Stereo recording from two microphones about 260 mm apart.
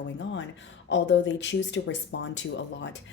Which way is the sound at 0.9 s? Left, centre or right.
Left.